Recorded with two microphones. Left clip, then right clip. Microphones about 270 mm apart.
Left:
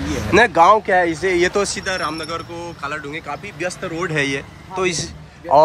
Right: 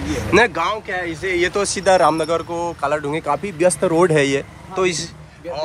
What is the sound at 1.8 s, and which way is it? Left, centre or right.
Speech, centre.